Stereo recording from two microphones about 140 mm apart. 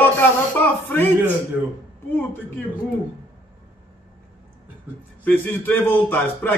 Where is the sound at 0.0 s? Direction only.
15° left (ahead or behind).